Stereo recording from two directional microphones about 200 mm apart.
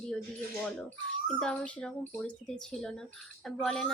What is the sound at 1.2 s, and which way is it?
Speech, 5° left (ahead or behind).